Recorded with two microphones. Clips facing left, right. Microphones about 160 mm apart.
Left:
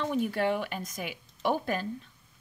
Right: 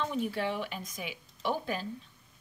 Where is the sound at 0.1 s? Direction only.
50° left (ahead or behind).